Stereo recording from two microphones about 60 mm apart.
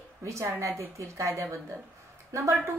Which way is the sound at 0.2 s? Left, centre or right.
Right.